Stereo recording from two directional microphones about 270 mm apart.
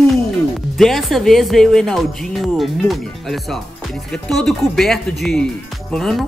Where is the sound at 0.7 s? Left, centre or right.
Centre.